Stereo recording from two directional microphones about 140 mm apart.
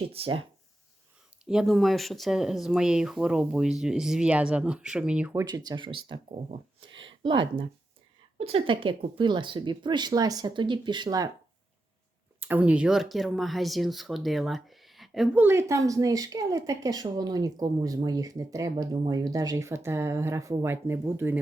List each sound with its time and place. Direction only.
0.1 s speech: 40° right (ahead or behind)
1.5 s speech: centre (ahead or behind)
5.3 s speech: 25° right (ahead or behind)
12.4 s speech: 10° right (ahead or behind)
15.4 s a woman's voice: 15° right (ahead or behind)